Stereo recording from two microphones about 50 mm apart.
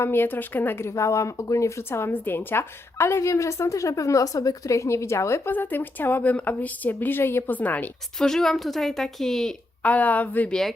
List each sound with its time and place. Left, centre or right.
0.0 s a woman's voice: left
0.9 s a woman's voice: left
1.9 s a woman's voice: left
3.0 s a woman's voice: left
5.5 s a woman's voice: left
7.5 s a woman's voice: left
8.2 s a woman's voice: centre
9.8 s a woman's voice: left